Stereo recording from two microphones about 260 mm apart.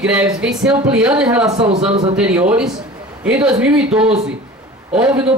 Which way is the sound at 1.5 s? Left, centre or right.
Right.